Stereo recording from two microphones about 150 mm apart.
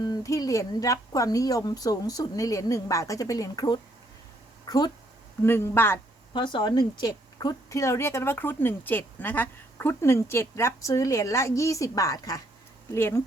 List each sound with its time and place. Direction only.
0.0 s a woman's voice: 25° left (ahead or behind)
5.5 s speech: 15° left (ahead or behind)
6.3 s a woman's voice: 30° left (ahead or behind)